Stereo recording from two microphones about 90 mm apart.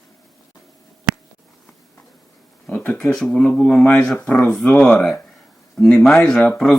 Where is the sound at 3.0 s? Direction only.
5° left (ahead or behind).